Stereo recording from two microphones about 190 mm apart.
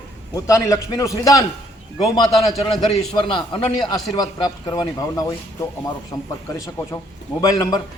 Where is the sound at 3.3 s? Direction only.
25° left (ahead or behind).